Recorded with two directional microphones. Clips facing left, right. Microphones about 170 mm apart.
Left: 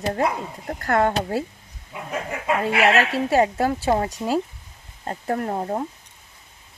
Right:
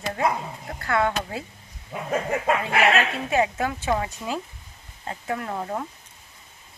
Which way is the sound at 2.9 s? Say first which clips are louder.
Left 4 dB; 35° left (ahead or behind).